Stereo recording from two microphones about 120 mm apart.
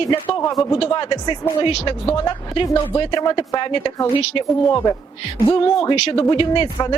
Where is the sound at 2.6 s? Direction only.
30° left (ahead or behind).